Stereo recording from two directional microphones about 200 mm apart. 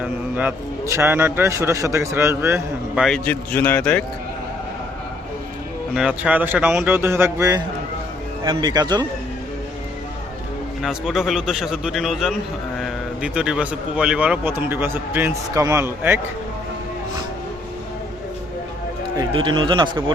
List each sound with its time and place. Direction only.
0.0 s speech: 10° right (ahead or behind)
3.0 s speech: 5° left (ahead or behind)
5.9 s a man's voice: 5° right (ahead or behind); by 9.0 s 20° right (ahead or behind)
10.8 s a man's voice: centre (ahead or behind)
19.1 s a man's voice: 20° right (ahead or behind)